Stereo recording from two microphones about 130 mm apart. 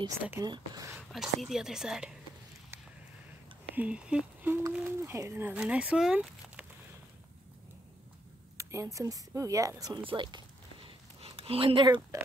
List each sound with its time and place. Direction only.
0.4 s speech: 30° right (ahead or behind)
0.9 s speech: centre (ahead or behind)
3.7 s speech: 10° right (ahead or behind)
8.5 s speech: 25° right (ahead or behind)
10.0 s a sound: 35° right (ahead or behind)